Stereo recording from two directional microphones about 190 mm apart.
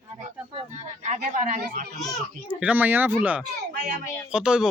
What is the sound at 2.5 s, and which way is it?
Speech, 5° right (ahead or behind).